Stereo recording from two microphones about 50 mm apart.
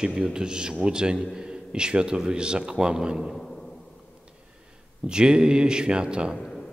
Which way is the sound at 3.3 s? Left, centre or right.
Centre.